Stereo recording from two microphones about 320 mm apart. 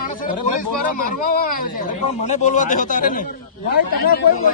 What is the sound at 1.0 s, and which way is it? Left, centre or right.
Speech, left.